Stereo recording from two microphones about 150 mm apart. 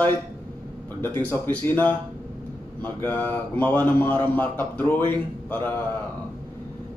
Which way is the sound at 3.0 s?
10° left (ahead or behind).